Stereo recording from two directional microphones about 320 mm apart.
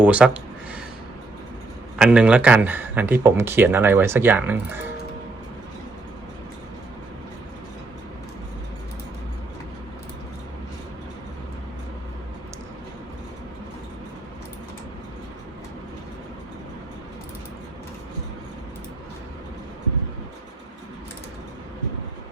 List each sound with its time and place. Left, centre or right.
0.0 s speech: centre
2.0 s speech: centre